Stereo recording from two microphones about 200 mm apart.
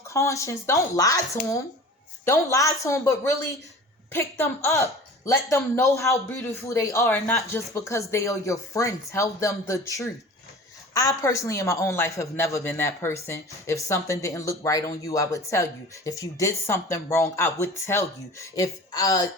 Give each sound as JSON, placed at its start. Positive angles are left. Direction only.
{"t": 0.1, "sound": "speech", "side_deg": 15}